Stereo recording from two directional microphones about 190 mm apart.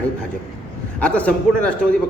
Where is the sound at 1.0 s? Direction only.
5° left (ahead or behind).